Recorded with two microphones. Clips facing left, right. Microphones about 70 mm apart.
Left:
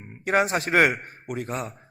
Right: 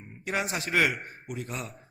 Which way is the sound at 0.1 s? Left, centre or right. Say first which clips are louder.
Left 9 dB; left.